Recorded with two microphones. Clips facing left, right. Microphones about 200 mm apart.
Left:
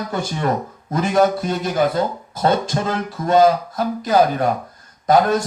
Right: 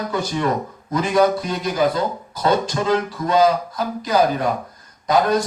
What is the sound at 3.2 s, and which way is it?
Speech, 50° left (ahead or behind).